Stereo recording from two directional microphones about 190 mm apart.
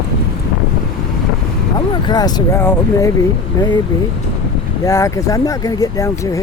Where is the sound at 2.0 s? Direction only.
20° left (ahead or behind).